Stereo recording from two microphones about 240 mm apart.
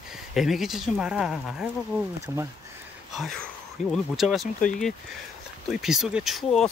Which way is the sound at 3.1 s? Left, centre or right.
Centre.